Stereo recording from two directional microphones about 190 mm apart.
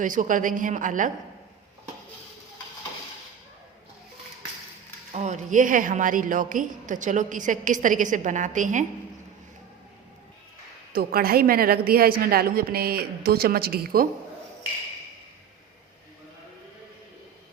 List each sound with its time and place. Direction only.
0.0 s a woman's voice: 45° right (ahead or behind)
5.1 s a woman's voice: 40° right (ahead or behind)
10.9 s a woman's voice: 50° right (ahead or behind)